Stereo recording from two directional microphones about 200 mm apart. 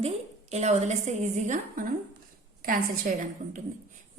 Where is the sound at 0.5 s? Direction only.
35° right (ahead or behind).